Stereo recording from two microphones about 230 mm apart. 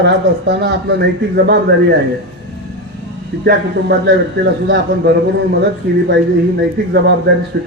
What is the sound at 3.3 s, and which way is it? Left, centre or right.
A man's voice, right.